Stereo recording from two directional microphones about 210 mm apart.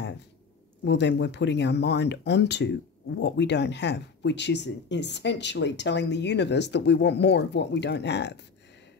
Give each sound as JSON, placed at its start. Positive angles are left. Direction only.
{"t": 0.8, "sound": "speech", "side_deg": 55}